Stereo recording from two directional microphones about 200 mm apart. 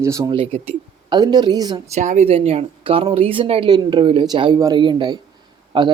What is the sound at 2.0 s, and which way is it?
Speech, 35° right (ahead or behind).